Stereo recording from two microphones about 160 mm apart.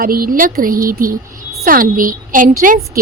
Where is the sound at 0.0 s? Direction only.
65° right (ahead or behind).